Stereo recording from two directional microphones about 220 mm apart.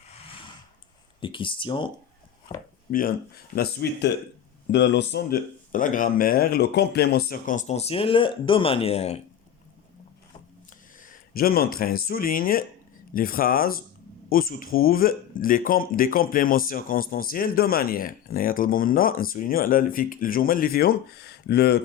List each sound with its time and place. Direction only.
0.3 s a sound: 25° left (ahead or behind)
1.2 s speech: 20° left (ahead or behind)
2.9 s speech: 40° left (ahead or behind)
11.0 s speech: 40° left (ahead or behind)